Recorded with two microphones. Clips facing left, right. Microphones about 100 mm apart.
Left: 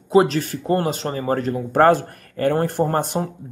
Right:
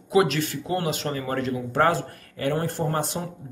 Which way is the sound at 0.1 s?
35° left (ahead or behind).